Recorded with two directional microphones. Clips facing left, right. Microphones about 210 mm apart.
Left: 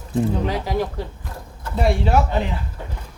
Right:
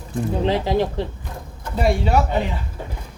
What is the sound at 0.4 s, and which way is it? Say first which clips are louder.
Speech: right 4 dB; 25° right (ahead or behind).